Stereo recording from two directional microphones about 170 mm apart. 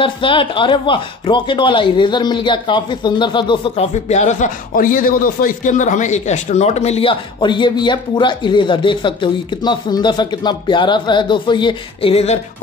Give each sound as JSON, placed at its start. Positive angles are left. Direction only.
{"t": 0.0, "sound": "speech", "side_deg": 30}